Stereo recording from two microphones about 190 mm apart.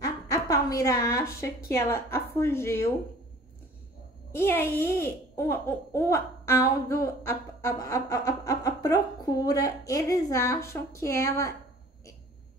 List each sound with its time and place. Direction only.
0.0 s a sound: 20° left (ahead or behind)
1.7 s speech: 15° left (ahead or behind)
4.3 s speech: 10° left (ahead or behind)